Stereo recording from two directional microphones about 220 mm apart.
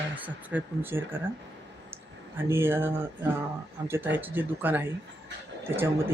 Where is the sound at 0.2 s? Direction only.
10° right (ahead or behind).